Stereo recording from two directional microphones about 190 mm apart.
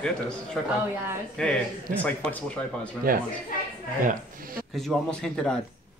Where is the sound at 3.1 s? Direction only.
50° right (ahead or behind).